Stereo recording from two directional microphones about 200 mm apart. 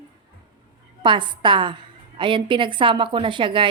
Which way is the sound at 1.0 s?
25° right (ahead or behind).